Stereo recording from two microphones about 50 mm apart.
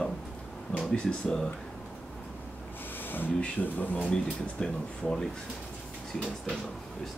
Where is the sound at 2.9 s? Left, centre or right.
Left.